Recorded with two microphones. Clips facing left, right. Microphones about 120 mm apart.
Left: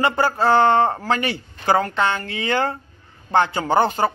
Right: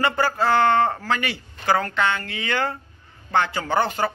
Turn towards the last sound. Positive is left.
turn(degrees=25)  # may be behind; listen again after turning